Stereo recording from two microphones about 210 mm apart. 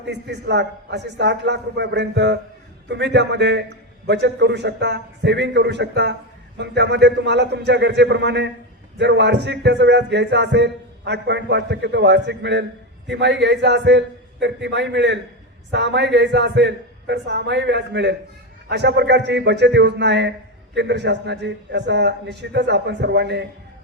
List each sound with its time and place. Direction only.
0.0 s a man's voice: 55° right (ahead or behind)